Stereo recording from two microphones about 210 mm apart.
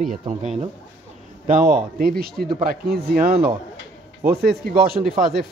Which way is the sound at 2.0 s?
45° right (ahead or behind).